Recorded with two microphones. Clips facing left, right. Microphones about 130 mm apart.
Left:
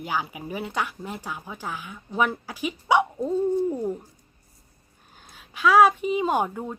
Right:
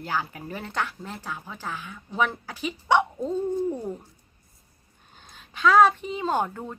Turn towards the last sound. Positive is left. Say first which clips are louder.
# left 2 dB
turn(degrees=10)  # may be behind; listen again after turning